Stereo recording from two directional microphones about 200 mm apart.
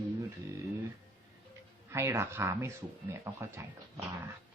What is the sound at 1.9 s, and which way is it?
Speech, 10° right (ahead or behind).